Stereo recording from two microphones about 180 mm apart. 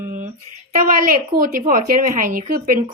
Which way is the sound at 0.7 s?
50° right (ahead or behind).